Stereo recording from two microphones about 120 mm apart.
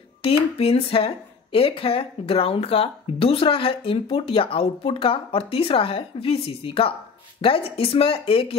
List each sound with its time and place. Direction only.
0.2 s speech: 55° left (ahead or behind)